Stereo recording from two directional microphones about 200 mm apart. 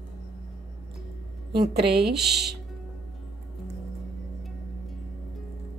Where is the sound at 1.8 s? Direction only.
50° right (ahead or behind).